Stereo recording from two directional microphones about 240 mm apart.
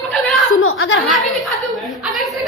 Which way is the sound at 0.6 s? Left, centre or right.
Left.